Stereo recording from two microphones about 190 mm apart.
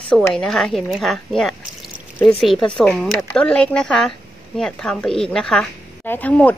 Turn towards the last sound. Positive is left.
turn(degrees=10)  # may be behind; listen again after turning